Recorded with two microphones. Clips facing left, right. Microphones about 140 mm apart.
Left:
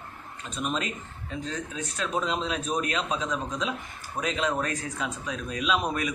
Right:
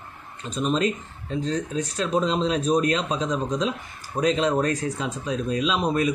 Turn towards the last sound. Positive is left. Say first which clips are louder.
# right 5 dB
turn(degrees=-30)  # may be behind; listen again after turning